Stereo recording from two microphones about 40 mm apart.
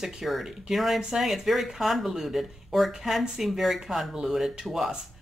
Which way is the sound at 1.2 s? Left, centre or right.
Centre.